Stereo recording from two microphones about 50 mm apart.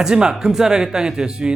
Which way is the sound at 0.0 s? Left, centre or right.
Centre.